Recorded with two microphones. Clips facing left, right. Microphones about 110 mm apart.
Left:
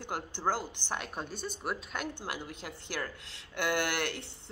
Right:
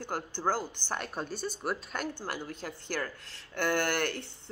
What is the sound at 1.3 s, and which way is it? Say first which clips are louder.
A woman's voice: right 3 dB; 40° right (ahead or behind).